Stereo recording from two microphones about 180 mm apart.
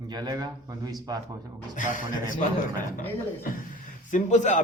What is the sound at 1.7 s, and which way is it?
Speech, 45° left (ahead or behind).